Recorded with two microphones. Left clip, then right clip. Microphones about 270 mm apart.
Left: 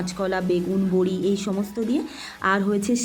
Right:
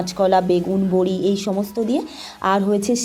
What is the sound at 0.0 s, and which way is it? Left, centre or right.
Speech, centre.